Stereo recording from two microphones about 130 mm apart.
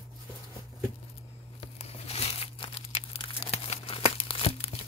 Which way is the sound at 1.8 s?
50° left (ahead or behind).